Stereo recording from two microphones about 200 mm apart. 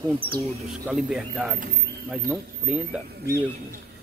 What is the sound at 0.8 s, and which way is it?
Speech, 5° right (ahead or behind).